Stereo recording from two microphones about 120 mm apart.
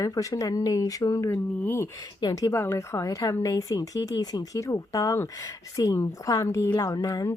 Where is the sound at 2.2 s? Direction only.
35° left (ahead or behind).